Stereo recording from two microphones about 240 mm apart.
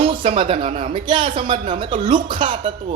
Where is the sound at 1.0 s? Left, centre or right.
Centre.